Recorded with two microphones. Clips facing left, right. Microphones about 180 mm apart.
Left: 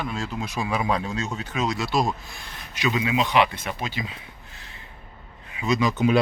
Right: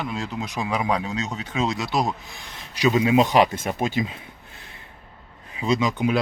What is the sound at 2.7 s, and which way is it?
Speech, 40° right (ahead or behind).